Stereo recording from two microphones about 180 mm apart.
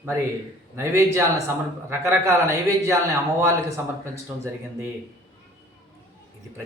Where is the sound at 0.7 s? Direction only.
15° right (ahead or behind).